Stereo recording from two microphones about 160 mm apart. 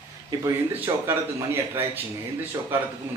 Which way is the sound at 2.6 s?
25° right (ahead or behind).